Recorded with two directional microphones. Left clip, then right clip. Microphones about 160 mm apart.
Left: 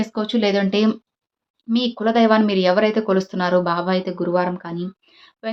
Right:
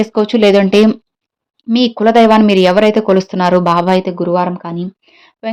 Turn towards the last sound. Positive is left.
turn(degrees=-45)  # may be behind; listen again after turning